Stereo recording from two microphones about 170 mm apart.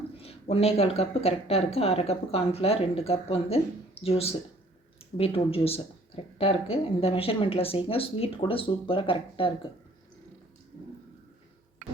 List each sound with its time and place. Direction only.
0.2 s speech: 35° left (ahead or behind)